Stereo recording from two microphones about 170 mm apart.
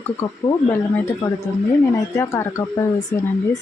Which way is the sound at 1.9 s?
20° left (ahead or behind).